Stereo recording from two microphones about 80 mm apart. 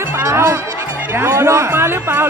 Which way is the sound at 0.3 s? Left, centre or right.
Right.